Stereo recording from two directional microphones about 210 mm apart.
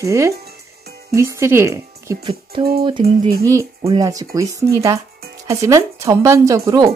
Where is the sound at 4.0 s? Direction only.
15° right (ahead or behind).